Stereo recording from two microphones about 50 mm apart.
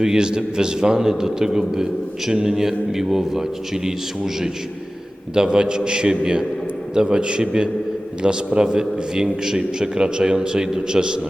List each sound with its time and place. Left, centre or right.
0.0 s a man's voice: centre
5.3 s a man's voice: centre